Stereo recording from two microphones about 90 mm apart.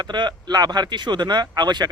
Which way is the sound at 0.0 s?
55° right (ahead or behind).